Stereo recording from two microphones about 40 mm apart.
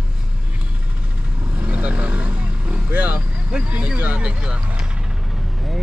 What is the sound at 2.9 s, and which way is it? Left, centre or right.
Speech, right.